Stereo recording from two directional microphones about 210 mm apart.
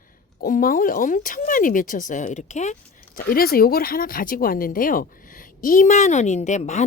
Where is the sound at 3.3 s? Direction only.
45° left (ahead or behind).